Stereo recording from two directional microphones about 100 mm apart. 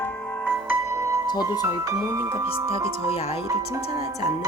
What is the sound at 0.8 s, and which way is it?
Music, 30° right (ahead or behind).